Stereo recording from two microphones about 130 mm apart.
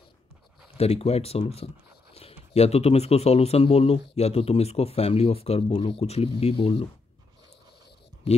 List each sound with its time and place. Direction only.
0.7 s speech: 50° left (ahead or behind)
8.3 s speech: 50° left (ahead or behind)